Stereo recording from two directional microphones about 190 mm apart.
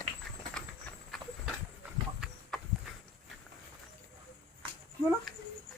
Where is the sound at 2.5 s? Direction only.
5° left (ahead or behind).